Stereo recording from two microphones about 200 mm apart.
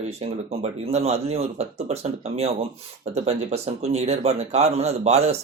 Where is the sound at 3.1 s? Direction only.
30° right (ahead or behind).